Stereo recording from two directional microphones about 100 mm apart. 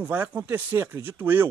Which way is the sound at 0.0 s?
20° right (ahead or behind).